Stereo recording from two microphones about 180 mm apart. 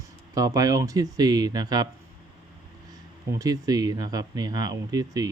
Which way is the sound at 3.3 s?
20° right (ahead or behind).